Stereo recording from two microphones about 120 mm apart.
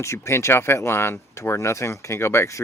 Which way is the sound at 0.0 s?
20° left (ahead or behind).